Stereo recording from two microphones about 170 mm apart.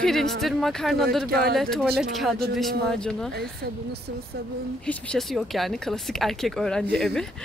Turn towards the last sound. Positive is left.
turn(degrees=0)  # may be behind; listen again after turning